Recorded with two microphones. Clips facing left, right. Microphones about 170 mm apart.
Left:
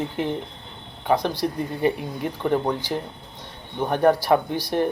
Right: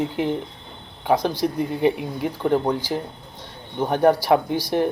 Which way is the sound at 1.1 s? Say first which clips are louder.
Right 2 dB; 15° right (ahead or behind).